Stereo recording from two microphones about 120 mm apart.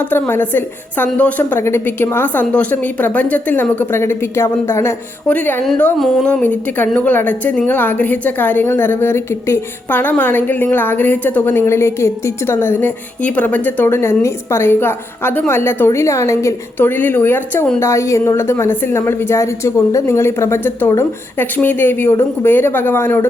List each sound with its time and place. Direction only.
0.0 s a woman's voice: 15° left (ahead or behind)